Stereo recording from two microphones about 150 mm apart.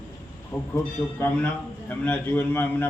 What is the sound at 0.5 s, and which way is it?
Speech, 15° left (ahead or behind).